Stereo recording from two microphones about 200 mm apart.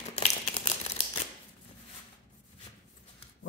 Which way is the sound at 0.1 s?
35° left (ahead or behind).